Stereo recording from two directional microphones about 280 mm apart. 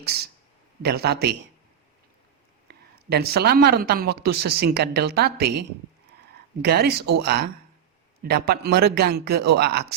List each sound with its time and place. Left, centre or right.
0.0 s speech: right
2.6 s speech: right